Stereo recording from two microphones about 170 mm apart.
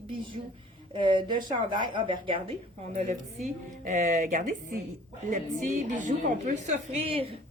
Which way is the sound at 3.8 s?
45° right (ahead or behind).